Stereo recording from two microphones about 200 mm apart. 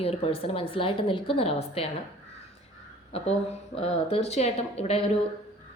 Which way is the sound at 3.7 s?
30° left (ahead or behind).